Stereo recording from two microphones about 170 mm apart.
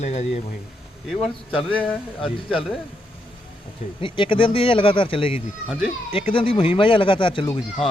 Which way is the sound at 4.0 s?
30° left (ahead or behind).